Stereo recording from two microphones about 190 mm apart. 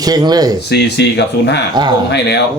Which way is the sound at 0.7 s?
60° left (ahead or behind).